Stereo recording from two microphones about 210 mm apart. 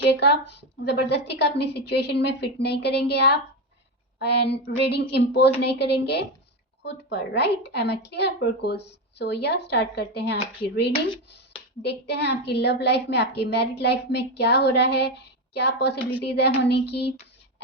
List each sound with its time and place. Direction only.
0.0 s a woman's voice: 55° left (ahead or behind)
11.9 s a woman's voice: 55° left (ahead or behind)